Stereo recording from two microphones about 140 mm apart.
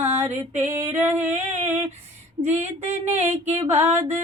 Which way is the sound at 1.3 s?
50° right (ahead or behind).